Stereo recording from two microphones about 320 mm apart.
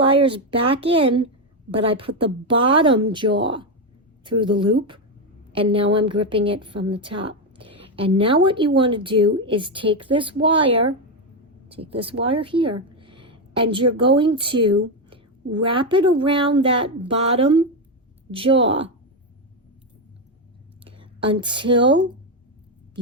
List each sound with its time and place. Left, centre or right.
0.0 s a woman's voice: centre
20.8 s speech: centre